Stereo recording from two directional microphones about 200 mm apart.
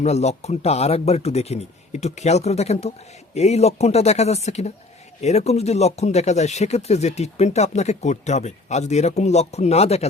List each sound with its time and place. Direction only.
0.0 s speech: 35° left (ahead or behind)